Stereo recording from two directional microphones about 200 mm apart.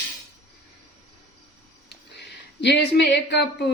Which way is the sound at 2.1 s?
55° left (ahead or behind).